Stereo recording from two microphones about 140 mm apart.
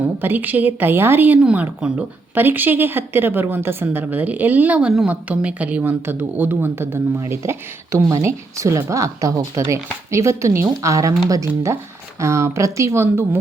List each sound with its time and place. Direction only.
0.2 s a woman's voice: 15° right (ahead or behind)
12.2 s speech: 20° right (ahead or behind)